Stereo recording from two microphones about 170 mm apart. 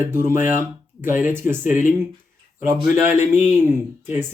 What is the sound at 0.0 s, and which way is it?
Speech, 15° right (ahead or behind).